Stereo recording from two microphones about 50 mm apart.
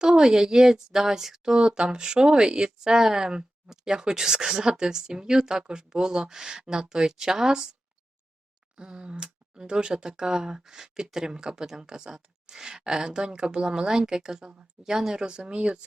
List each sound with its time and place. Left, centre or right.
0.0 s a woman's voice: centre
8.7 s a woman's voice: centre